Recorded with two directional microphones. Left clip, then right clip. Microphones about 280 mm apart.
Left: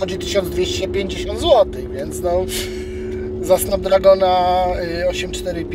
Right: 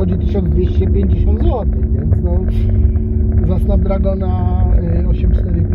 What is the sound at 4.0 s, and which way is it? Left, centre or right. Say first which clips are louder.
Speech: left 10 dB; centre.